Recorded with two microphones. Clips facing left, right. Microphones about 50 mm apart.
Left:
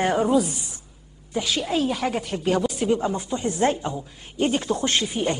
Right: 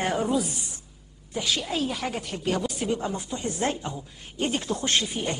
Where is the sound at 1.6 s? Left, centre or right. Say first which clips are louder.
Left 5 dB; centre.